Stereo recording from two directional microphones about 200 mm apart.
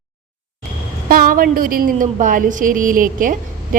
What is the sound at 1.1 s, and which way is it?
A woman's voice, 45° right (ahead or behind).